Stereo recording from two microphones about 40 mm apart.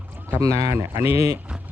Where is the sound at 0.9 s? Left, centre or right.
Right.